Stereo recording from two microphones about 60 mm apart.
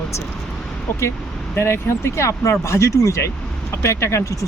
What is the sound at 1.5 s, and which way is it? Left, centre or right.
Speech, left.